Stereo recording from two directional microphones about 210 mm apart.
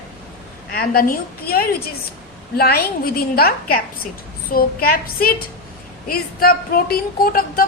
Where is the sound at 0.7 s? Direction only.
45° left (ahead or behind).